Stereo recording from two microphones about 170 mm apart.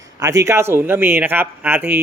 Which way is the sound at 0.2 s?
20° right (ahead or behind).